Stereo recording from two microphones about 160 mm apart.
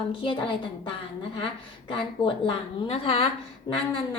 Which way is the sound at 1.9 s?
30° left (ahead or behind).